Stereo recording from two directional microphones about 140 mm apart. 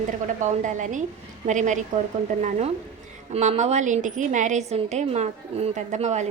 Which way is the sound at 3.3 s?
50° right (ahead or behind).